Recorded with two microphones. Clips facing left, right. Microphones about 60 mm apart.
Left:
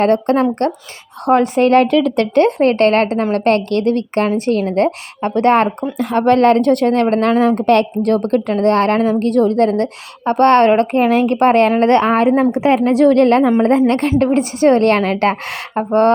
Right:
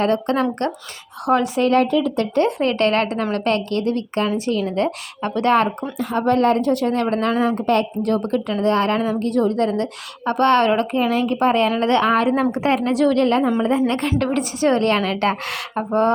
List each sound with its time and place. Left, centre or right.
0.0 s a woman's voice: left
1.9 s speech: left
2.5 s a woman's voice: left
4.9 s a woman's voice: left
6.0 s a woman's voice: left
12.3 s speech: left
12.8 s a woman's voice: left
15.9 s speech: left